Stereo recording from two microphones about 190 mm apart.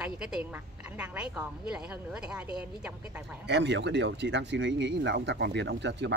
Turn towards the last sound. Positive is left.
turn(degrees=-65)  # may be behind; listen again after turning